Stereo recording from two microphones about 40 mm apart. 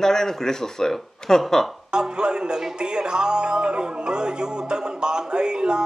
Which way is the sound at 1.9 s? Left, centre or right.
Right.